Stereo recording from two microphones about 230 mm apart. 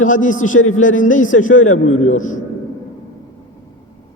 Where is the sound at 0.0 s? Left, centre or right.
Left.